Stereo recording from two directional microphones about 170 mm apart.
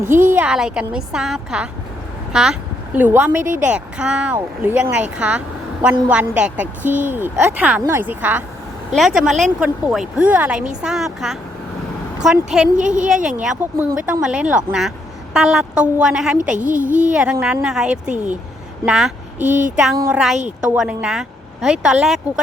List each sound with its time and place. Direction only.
0.3 s a woman's voice: 5° right (ahead or behind)
12.7 s speech: 45° right (ahead or behind)
13.2 s a woman's voice: 5° right (ahead or behind)
16.6 s speech: 50° right (ahead or behind)
17.1 s speech: 5° right (ahead or behind)
19.4 s speech: 45° right (ahead or behind)
20.1 s speech: 5° right (ahead or behind)